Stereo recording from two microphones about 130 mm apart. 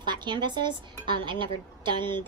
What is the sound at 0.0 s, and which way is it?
A woman's voice, 35° right (ahead or behind).